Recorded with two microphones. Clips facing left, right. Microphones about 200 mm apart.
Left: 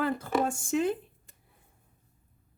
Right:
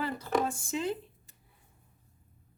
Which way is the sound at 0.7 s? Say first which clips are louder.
Left 5 dB; 50° left (ahead or behind).